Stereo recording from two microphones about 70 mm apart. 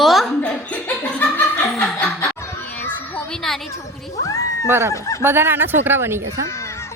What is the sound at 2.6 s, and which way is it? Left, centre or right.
Children playing, left.